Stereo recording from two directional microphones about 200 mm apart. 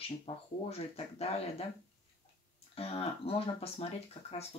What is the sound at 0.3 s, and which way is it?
Speech, 25° left (ahead or behind).